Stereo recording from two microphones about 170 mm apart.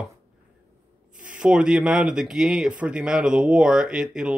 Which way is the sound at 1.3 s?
5° right (ahead or behind).